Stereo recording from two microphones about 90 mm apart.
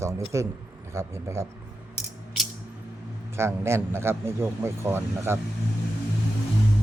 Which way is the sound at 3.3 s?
30° right (ahead or behind).